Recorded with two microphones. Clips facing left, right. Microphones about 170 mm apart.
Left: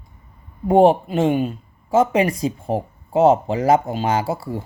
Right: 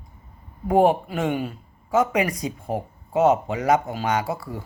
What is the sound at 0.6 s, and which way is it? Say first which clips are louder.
Speech: left 4 dB; 30° left (ahead or behind).